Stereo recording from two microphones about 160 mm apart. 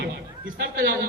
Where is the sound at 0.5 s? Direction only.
75° right (ahead or behind).